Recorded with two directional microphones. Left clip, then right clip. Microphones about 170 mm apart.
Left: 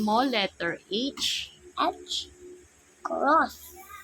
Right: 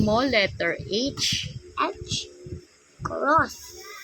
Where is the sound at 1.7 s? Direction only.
35° left (ahead or behind).